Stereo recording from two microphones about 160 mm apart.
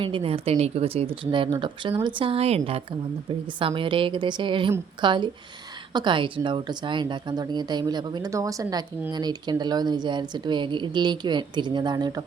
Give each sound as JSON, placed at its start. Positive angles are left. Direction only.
{"t": 0.0, "sound": "speech", "side_deg": -35}